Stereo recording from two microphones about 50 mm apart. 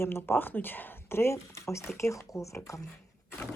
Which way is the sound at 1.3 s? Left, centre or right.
Left.